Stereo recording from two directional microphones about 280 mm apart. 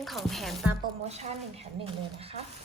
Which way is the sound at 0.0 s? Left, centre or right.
Centre.